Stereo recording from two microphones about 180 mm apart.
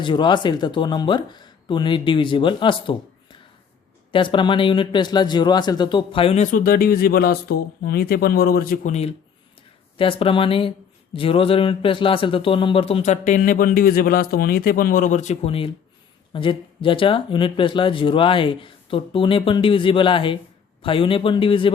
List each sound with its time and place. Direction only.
0.0 s speech: 25° left (ahead or behind)